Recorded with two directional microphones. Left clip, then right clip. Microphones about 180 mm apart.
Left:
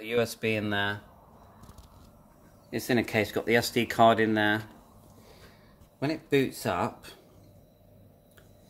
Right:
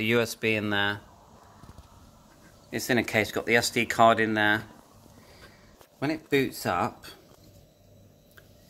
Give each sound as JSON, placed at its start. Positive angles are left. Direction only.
{"t": 0.0, "sound": "speech", "side_deg": -10}
{"t": 2.7, "sound": "speech", "side_deg": 10}
{"t": 5.9, "sound": "speech", "side_deg": 0}